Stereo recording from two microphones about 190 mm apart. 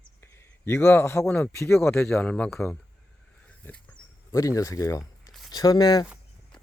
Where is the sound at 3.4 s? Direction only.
5° left (ahead or behind).